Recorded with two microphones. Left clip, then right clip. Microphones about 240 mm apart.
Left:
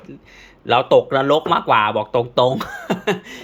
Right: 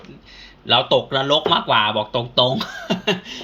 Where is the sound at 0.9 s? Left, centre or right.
Left.